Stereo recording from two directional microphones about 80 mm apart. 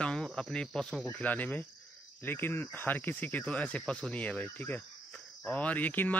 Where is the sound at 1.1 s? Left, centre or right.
Centre.